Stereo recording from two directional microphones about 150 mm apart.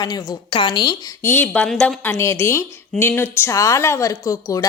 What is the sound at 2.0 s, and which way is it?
A woman's voice, 15° left (ahead or behind).